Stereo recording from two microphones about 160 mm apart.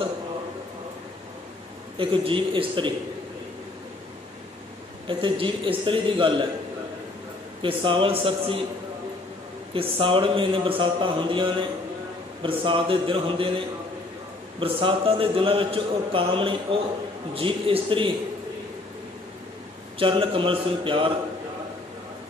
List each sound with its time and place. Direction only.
2.0 s a man's voice: 30° right (ahead or behind)
5.0 s a man's voice: 30° right (ahead or behind)
7.6 s a man's voice: 35° right (ahead or behind)
9.8 s a man's voice: 35° right (ahead or behind)
12.4 s a man's voice: 35° right (ahead or behind)
14.6 s a man's voice: 35° right (ahead or behind)
20.0 s a man's voice: 35° right (ahead or behind)